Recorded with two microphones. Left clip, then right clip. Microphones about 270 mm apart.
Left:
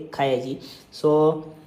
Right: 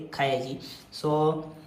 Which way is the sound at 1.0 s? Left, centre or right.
Right.